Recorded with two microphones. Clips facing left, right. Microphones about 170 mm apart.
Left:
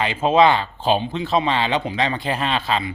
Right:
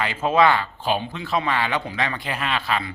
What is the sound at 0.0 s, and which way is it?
Speech, 20° left (ahead or behind).